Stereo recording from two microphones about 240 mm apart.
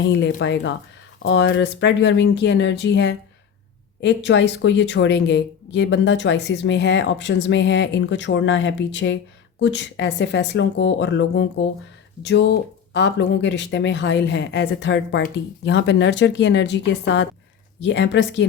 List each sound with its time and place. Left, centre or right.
0.1 s speech: left